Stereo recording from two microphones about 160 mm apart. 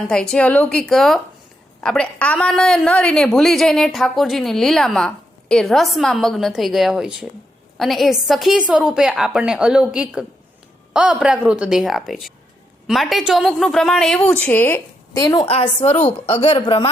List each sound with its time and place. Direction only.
0.1 s a woman's voice: 5° left (ahead or behind)
15.2 s a woman's voice: 30° left (ahead or behind)